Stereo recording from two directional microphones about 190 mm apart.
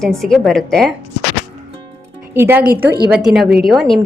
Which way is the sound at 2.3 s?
10° right (ahead or behind).